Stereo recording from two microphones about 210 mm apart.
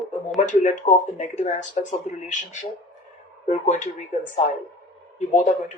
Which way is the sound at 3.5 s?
35° left (ahead or behind).